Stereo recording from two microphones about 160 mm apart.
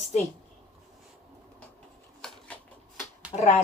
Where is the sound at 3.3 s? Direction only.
35° left (ahead or behind).